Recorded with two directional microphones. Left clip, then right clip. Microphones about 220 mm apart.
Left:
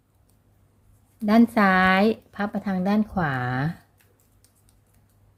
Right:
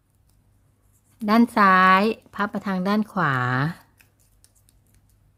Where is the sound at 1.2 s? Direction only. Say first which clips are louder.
Right 2 dB; 20° right (ahead or behind).